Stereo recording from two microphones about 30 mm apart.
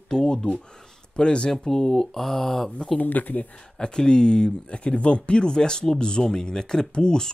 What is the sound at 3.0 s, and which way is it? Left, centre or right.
Speech, left.